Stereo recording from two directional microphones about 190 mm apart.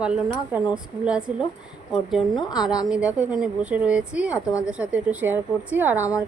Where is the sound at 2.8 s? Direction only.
5° right (ahead or behind).